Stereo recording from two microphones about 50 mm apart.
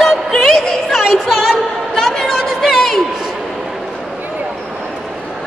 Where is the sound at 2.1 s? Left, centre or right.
Centre.